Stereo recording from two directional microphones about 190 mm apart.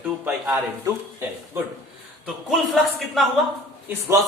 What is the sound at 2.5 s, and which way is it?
Speech, centre (ahead or behind).